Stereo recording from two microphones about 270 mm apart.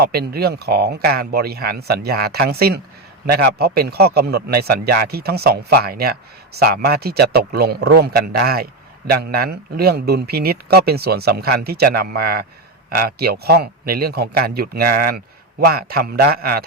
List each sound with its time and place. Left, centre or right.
0.0 s a man's voice: right